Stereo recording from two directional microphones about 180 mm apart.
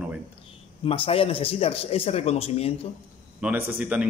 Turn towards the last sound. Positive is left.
turn(degrees=-10)  # may be behind; listen again after turning